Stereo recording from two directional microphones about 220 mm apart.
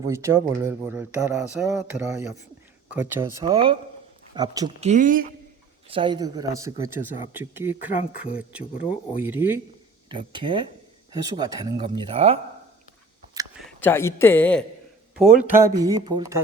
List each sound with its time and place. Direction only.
0.0 s speech: 15° right (ahead or behind)
4.8 s speech: 35° right (ahead or behind)
5.9 s speech: 20° right (ahead or behind)
10.1 s speech: 20° right (ahead or behind)
13.6 s speech: 5° left (ahead or behind)
15.2 s speech: 5° right (ahead or behind)